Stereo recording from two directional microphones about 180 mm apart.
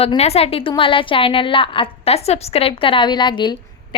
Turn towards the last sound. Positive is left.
turn(degrees=25)  # may be behind; listen again after turning